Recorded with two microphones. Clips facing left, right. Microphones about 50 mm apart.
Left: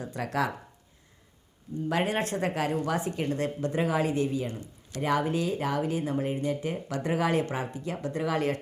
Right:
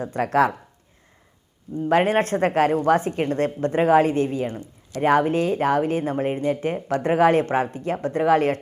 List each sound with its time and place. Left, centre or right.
0.0 s speech: right
1.8 s speech: right